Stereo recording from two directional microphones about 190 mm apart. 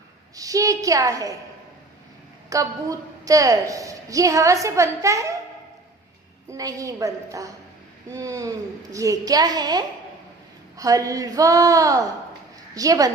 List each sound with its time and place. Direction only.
0.3 s a woman's voice: 20° right (ahead or behind)
2.5 s a woman's voice: 15° right (ahead or behind)
6.5 s a woman's voice: 20° right (ahead or behind)